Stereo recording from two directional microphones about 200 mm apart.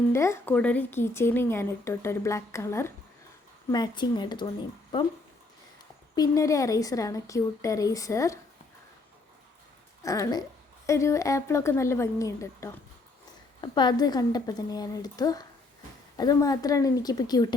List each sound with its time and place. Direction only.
0.1 s a woman's voice: 15° left (ahead or behind)
6.1 s speech: 15° left (ahead or behind)
10.0 s a woman's voice: 15° left (ahead or behind)